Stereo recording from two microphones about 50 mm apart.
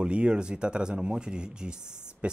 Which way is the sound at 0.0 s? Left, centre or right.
Centre.